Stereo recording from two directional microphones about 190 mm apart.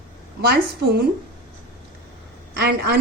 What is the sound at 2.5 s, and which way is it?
Speech, 60° right (ahead or behind).